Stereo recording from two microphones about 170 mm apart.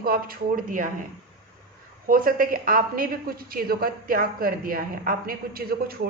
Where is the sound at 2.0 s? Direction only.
55° right (ahead or behind).